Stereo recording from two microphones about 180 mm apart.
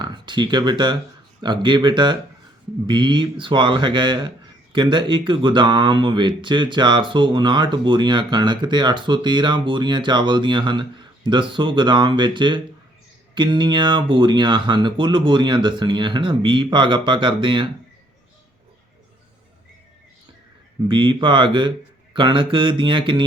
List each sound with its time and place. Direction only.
0.0 s speech: 25° right (ahead or behind)
20.8 s speech: 25° right (ahead or behind)